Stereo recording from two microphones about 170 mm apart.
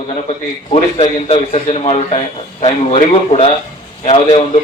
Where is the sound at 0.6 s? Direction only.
40° left (ahead or behind).